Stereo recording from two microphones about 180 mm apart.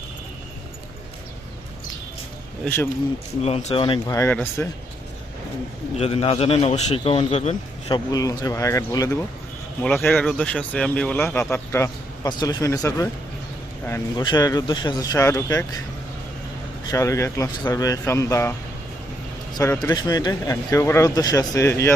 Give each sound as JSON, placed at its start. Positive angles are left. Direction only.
{"t": 2.6, "sound": "speech", "side_deg": 10}
{"t": 3.4, "sound": "speech", "side_deg": 35}
{"t": 6.0, "sound": "a man's voice", "side_deg": 35}
{"t": 11.3, "sound": "speech", "side_deg": 15}
{"t": 14.2, "sound": "speech", "side_deg": 25}
{"t": 16.8, "sound": "speech", "side_deg": 20}
{"t": 19.8, "sound": "speech", "side_deg": 20}